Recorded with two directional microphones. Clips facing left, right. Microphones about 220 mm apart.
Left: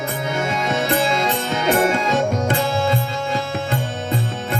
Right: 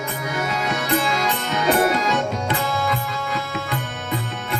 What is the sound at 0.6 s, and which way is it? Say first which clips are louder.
Music: left 3 dB; 30° left (ahead or behind).